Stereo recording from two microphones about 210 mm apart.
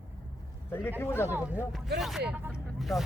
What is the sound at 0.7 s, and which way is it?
Speech, 10° left (ahead or behind).